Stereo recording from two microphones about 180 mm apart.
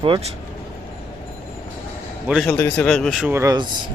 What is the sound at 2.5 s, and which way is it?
Speech, 10° left (ahead or behind).